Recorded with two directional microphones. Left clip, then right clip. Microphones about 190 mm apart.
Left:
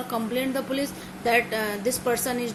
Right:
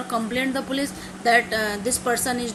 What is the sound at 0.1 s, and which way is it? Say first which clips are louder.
A woman's voice: right 3 dB; 20° right (ahead or behind).